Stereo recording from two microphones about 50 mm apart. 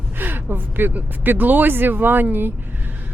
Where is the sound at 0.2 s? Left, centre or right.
Right.